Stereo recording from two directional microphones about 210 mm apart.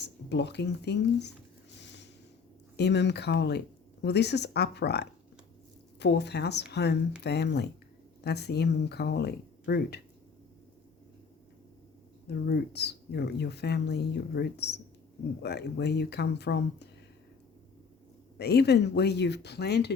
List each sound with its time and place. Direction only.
0.0 s speech: 55° left (ahead or behind)
1.8 s a sound: 55° left (ahead or behind)
2.7 s speech: 55° left (ahead or behind)
12.3 s speech: 50° left (ahead or behind)
18.3 s speech: 50° left (ahead or behind)